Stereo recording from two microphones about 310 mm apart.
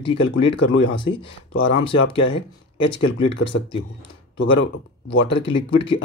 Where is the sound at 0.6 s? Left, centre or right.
Left.